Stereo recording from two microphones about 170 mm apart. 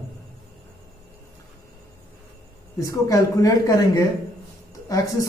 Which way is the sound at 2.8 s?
20° left (ahead or behind).